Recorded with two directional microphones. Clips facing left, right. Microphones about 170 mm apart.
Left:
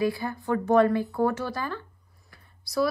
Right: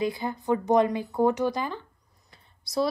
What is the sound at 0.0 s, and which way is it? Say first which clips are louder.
A woman's voice: left 1 dB; 20° right (ahead or behind).